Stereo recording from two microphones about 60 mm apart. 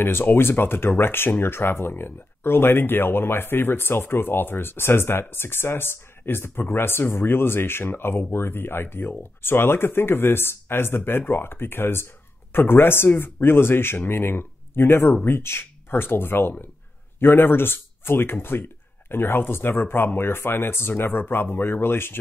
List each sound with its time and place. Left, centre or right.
0.0 s speech: left